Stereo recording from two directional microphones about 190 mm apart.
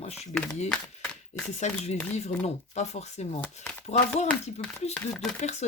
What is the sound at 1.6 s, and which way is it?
Speech, 35° left (ahead or behind).